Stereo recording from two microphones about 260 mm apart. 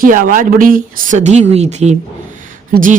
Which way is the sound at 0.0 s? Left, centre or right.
Right.